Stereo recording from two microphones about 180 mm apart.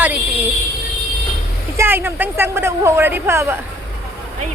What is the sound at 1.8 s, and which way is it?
A woman's voice, 10° right (ahead or behind).